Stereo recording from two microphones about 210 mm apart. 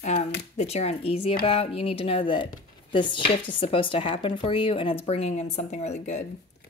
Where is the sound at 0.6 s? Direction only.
30° left (ahead or behind).